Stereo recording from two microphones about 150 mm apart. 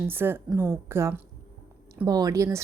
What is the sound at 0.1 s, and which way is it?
A woman's voice, 15° right (ahead or behind).